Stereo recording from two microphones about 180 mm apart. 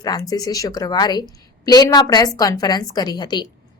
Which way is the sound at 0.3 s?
20° left (ahead or behind).